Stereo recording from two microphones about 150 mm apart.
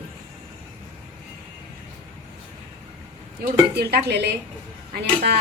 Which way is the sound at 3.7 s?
90° right.